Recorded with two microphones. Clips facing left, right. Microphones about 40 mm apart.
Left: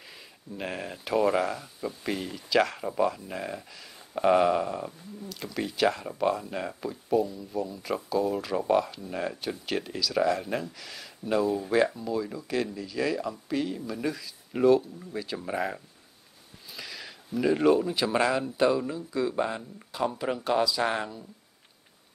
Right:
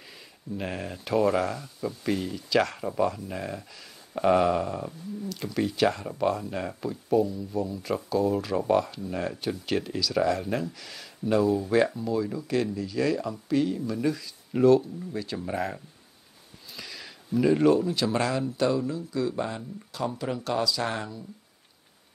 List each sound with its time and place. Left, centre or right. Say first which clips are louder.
0.0 s speech: right 2 dB; centre